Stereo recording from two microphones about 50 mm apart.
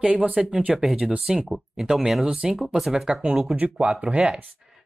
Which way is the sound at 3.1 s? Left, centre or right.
Centre.